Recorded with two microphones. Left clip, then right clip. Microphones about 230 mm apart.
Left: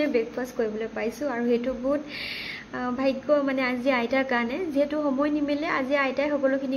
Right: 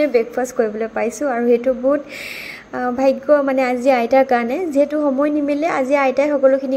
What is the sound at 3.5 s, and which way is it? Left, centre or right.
A woman's voice, centre.